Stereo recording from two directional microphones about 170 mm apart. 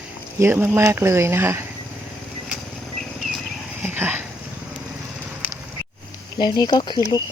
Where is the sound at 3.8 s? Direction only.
10° right (ahead or behind).